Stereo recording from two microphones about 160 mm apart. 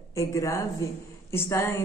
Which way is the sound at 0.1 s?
20° left (ahead or behind).